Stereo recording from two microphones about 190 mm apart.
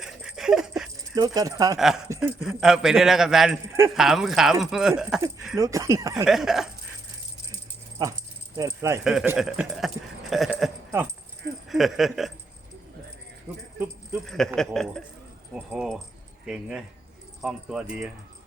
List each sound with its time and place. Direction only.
0.0 s dog: 5° right (ahead or behind)
1.1 s speech: 20° right (ahead or behind)
2.4 s a man's voice: centre (ahead or behind)
3.7 s speech: 15° right (ahead or behind)
3.9 s a man's voice: centre (ahead or behind)
5.5 s speech: 15° right (ahead or behind)
6.2 s a man's voice: centre (ahead or behind)
8.0 s speech: 15° right (ahead or behind)
9.0 s a man's voice: 5° right (ahead or behind)
13.7 s keys jangling: 10° right (ahead or behind)
14.3 s a man's voice: centre (ahead or behind)